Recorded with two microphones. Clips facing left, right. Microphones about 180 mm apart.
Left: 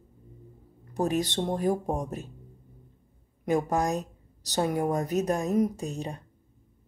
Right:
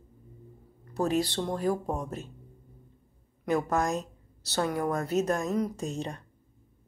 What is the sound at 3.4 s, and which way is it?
A woman's voice, 15° left (ahead or behind).